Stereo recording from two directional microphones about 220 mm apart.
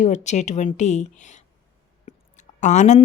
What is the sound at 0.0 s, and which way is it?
A woman's voice, 30° left (ahead or behind).